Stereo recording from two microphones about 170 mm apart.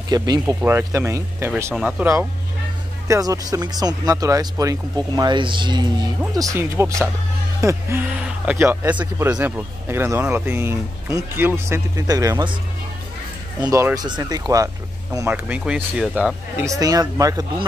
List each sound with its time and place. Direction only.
0.1 s speech: 25° right (ahead or behind)
13.7 s speech: 20° right (ahead or behind)